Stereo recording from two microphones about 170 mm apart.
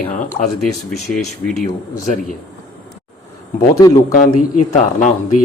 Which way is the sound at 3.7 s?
20° left (ahead or behind).